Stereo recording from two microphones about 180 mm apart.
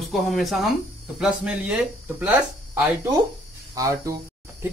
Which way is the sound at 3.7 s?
20° right (ahead or behind).